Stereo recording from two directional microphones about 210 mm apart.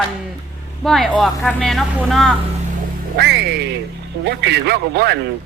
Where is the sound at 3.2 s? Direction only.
50° right (ahead or behind).